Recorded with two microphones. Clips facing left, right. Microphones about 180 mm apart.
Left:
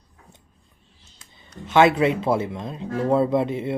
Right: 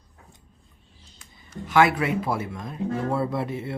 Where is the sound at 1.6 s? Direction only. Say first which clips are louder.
Left 4 dB; 25° left (ahead or behind).